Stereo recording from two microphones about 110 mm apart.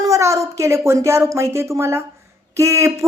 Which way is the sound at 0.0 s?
30° right (ahead or behind).